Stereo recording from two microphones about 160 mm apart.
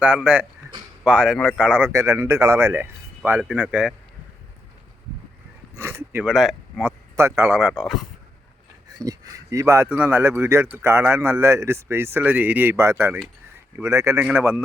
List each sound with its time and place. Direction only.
0.0 s speech: 5° right (ahead or behind)
1.9 s speech: 15° right (ahead or behind)
5.7 s a sound: 15° right (ahead or behind)
6.2 s speech: centre (ahead or behind)
7.2 s speech: 15° right (ahead or behind)
9.0 s speech: 20° right (ahead or behind)